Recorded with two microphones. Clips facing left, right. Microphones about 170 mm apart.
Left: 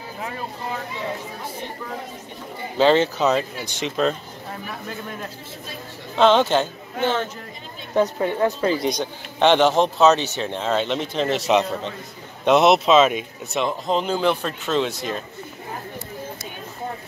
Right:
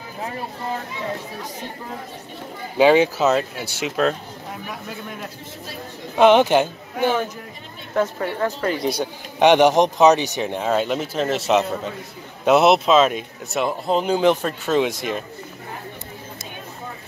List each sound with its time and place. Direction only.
2.8 s speech: 10° right (ahead or behind)
6.1 s speech: 15° right (ahead or behind)
7.9 s a woman's voice: 20° left (ahead or behind)
8.8 s speech: 10° right (ahead or behind)